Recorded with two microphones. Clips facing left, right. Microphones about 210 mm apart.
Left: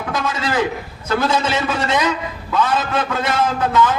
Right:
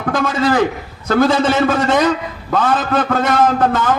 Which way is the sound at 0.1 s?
50° right (ahead or behind).